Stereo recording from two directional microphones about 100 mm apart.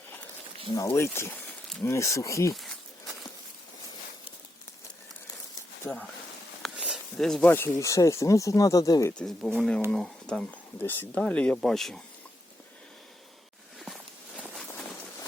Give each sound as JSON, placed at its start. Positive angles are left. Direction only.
{"t": 0.8, "sound": "speech", "side_deg": 30}
{"t": 2.6, "sound": "a sound", "side_deg": 0}
{"t": 5.8, "sound": "speech", "side_deg": 20}
{"t": 6.7, "sound": "a sound", "side_deg": -10}
{"t": 7.2, "sound": "speech", "side_deg": 5}
{"t": 7.4, "sound": "speech", "side_deg": 20}
{"t": 9.1, "sound": "speech", "side_deg": 5}
{"t": 13.7, "sound": "walk", "side_deg": 0}